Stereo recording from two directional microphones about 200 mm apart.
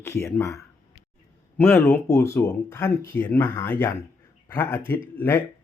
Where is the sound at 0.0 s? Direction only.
10° left (ahead or behind).